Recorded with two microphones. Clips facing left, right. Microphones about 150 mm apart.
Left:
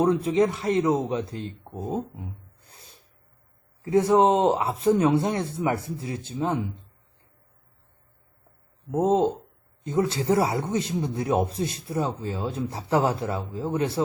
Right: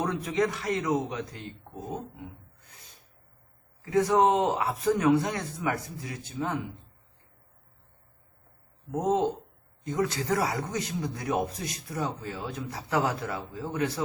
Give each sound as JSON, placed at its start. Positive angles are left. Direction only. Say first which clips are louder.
{"t": 0.0, "sound": "speech", "louder": "left 7 dB", "side_deg": 30}
{"t": 2.1, "sound": "gasp", "louder": "left 3 dB", "side_deg": 30}
{"t": 3.8, "sound": "speech", "louder": "left 4 dB", "side_deg": 25}
{"t": 9.0, "sound": "speech", "louder": "left 5 dB", "side_deg": 30}